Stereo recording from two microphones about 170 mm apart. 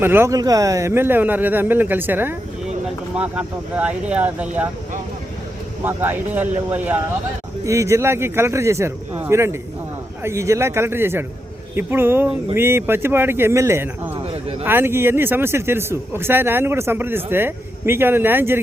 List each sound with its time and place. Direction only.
0.0 s speech: 15° right (ahead or behind)
5.8 s speech: 10° right (ahead or behind)
14.2 s a sound: 35° right (ahead or behind)
14.6 s speech: 10° right (ahead or behind)